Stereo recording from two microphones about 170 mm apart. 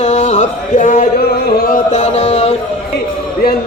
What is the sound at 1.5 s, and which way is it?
Speech, 65° left (ahead or behind).